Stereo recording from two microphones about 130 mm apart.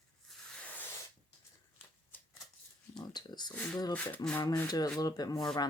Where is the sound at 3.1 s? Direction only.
35° left (ahead or behind).